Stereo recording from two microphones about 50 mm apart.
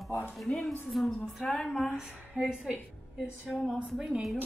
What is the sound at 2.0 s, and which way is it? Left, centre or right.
A woman's voice, centre.